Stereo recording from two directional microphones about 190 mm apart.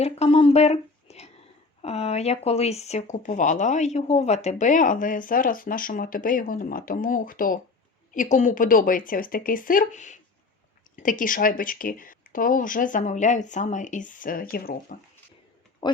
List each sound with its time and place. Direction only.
0.0 s a sound: 30° left (ahead or behind)
1.8 s speech: 35° left (ahead or behind); by 14.9 s 50° left (ahead or behind)
15.8 s speech: 25° left (ahead or behind)